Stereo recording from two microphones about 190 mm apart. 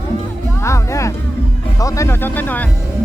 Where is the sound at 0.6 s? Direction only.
15° left (ahead or behind).